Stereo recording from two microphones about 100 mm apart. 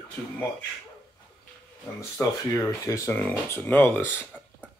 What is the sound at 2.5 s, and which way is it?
Speech, 30° left (ahead or behind).